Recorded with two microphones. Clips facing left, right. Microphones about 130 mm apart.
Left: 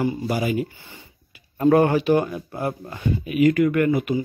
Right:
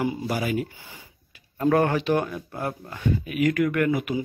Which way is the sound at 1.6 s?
15° left (ahead or behind).